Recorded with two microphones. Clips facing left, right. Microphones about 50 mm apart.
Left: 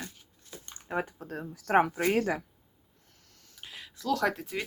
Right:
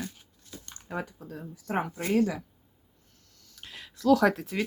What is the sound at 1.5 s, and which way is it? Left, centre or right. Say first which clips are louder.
Speech: left 7 dB; left.